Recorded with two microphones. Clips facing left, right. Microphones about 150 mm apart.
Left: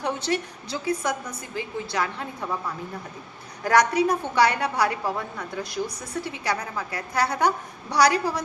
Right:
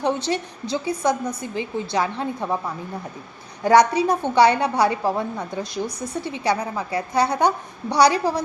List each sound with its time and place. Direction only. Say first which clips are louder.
0.0 s a woman's voice: right 4 dB; 25° right (ahead or behind)
3.6 s a woman's voice: right 4 dB; 25° right (ahead or behind)